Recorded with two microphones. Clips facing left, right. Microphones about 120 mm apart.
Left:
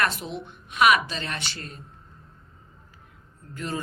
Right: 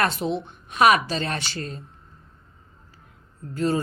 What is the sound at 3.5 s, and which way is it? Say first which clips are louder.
Speech: right 9 dB; 35° right (ahead or behind).